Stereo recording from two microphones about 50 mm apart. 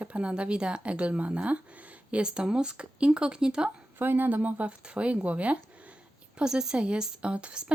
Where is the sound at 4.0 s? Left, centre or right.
Right.